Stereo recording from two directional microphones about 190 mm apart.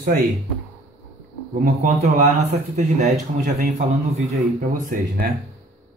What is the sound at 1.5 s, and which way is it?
A man's voice, 40° right (ahead or behind).